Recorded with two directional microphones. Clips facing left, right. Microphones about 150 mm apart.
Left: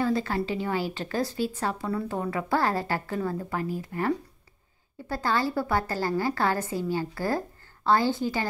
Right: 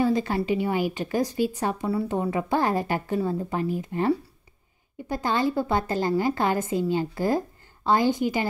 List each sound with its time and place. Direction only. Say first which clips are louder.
0.0 s a woman's voice: right 3 dB; 15° right (ahead or behind)